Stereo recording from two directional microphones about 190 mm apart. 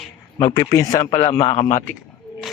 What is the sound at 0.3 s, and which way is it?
Speech, 20° left (ahead or behind).